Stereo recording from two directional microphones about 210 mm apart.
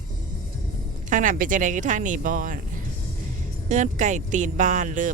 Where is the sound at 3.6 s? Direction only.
35° right (ahead or behind).